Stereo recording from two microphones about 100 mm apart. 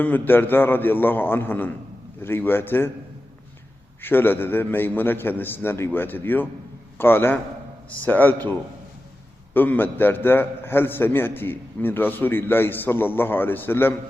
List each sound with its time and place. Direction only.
0.0 s a man's voice: 20° left (ahead or behind)
4.0 s a man's voice: 20° left (ahead or behind)
9.6 s a man's voice: 20° left (ahead or behind)